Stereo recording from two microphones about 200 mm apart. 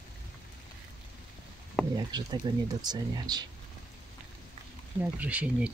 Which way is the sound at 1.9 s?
20° right (ahead or behind).